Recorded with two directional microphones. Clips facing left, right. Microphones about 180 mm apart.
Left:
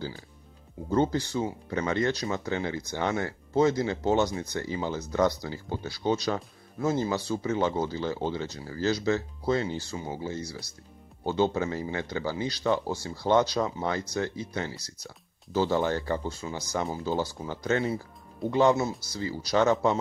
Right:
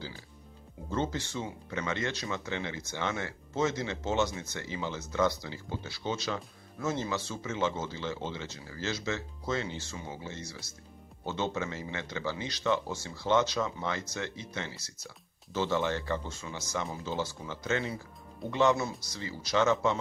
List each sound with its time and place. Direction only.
0.8 s speech: 40° left (ahead or behind)